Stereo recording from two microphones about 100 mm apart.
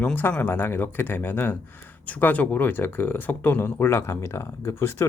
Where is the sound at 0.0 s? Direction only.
20° left (ahead or behind).